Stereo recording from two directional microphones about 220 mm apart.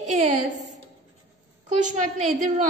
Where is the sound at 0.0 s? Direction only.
35° right (ahead or behind).